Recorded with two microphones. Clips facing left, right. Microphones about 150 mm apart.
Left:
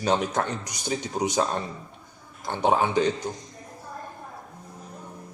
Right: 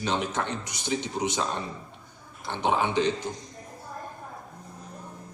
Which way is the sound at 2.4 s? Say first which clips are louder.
Left 3 dB; 45° left (ahead or behind).